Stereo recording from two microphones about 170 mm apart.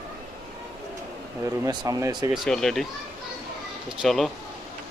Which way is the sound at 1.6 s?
20° right (ahead or behind).